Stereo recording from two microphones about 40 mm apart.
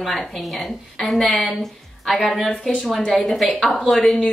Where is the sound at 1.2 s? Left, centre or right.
Centre.